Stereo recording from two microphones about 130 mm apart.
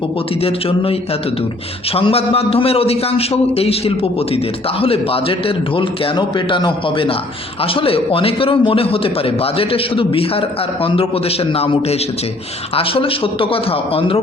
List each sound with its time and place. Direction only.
0.4 s a man's voice: 45° left (ahead or behind)